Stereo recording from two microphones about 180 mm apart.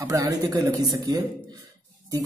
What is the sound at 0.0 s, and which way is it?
Speech, 20° right (ahead or behind).